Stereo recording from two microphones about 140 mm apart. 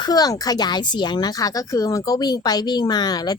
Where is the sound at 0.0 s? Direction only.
30° left (ahead or behind).